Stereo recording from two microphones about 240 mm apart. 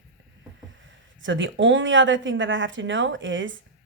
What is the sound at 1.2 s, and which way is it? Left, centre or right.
Speech, right.